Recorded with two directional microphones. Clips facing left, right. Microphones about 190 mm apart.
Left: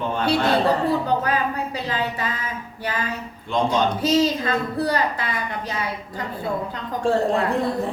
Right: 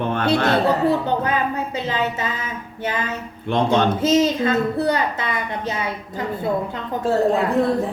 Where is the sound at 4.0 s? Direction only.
25° right (ahead or behind).